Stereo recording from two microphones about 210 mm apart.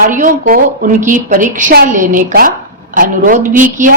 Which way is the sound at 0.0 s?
40° right (ahead or behind).